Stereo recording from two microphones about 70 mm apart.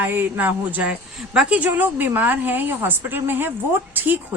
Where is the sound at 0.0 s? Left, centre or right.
Right.